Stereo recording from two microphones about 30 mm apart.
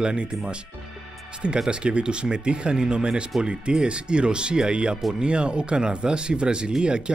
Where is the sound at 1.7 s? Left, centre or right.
Right.